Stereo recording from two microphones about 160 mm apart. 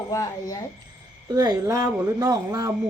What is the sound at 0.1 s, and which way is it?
Speech, 20° left (ahead or behind).